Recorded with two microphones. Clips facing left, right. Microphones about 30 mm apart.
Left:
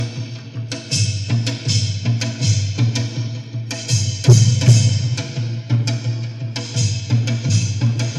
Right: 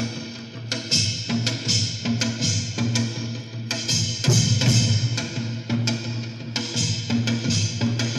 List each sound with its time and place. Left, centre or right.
0.7 s music: right
1.3 s music: centre
2.8 s music: centre
3.7 s music: centre
5.1 s music: centre
6.5 s music: centre